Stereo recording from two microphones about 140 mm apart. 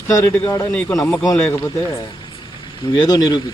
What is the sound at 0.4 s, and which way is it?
Speech, 15° left (ahead or behind).